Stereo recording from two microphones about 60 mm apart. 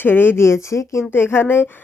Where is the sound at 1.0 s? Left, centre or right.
Left.